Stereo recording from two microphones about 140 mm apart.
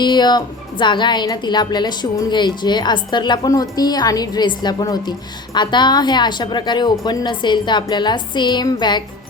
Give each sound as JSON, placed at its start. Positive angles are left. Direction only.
{"t": 0.0, "sound": "a woman's voice", "side_deg": 30}